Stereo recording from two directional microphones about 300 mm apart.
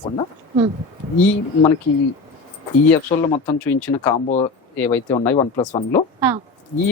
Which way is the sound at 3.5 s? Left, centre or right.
Centre.